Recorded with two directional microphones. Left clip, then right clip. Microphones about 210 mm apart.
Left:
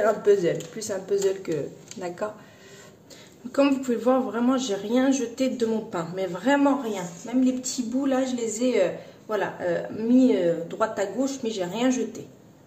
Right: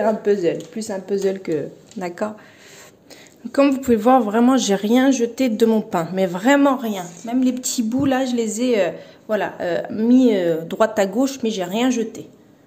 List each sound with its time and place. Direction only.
0.0 s speech: 30° right (ahead or behind)
3.5 s a man's voice: 30° right (ahead or behind)